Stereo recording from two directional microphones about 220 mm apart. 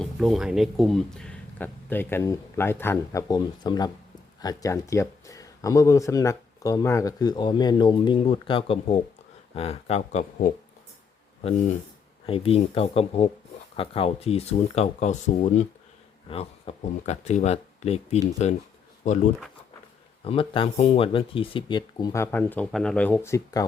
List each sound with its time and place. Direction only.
0.0 s speech: centre (ahead or behind); by 10.5 s 30° left (ahead or behind)
12.2 s speech: 25° left (ahead or behind)
20.2 s speech: 25° left (ahead or behind)